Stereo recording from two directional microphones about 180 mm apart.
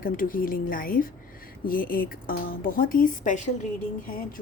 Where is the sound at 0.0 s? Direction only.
50° left (ahead or behind).